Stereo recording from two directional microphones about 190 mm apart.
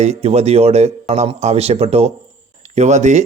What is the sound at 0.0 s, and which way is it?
A man's voice, 35° right (ahead or behind).